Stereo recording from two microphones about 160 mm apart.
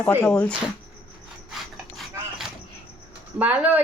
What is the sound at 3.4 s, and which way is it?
Speech, 10° right (ahead or behind).